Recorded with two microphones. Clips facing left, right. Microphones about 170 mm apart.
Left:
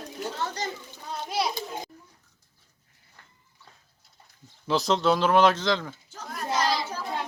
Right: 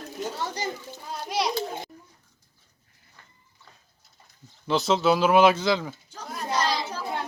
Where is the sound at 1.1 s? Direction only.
Centre (ahead or behind).